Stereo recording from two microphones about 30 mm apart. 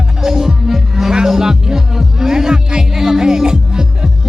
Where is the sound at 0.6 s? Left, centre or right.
Centre.